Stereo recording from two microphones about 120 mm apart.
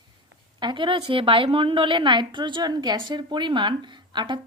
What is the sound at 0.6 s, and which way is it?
A woman's voice, 40° right (ahead or behind).